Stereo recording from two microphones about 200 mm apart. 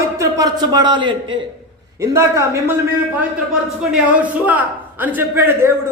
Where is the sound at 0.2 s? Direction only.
15° right (ahead or behind).